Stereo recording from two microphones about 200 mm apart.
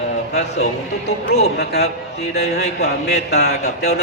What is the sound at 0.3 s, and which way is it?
Speech, 35° left (ahead or behind).